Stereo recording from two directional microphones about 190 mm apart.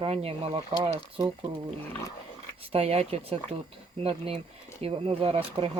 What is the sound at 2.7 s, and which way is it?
Speech, 35° right (ahead or behind).